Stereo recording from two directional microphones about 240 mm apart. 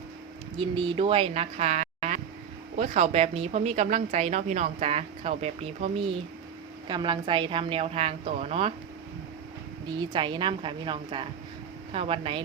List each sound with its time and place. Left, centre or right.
0.6 s a woman's voice: right
9.9 s a woman's voice: centre